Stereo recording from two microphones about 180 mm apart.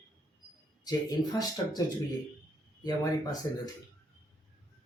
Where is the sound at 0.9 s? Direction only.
20° left (ahead or behind).